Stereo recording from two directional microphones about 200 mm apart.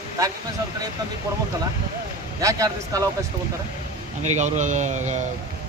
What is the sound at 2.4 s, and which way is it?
Speech, 15° right (ahead or behind).